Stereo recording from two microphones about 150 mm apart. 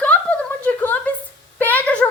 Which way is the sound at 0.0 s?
10° left (ahead or behind).